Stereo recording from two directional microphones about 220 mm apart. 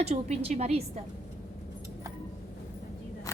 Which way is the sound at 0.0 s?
30° right (ahead or behind).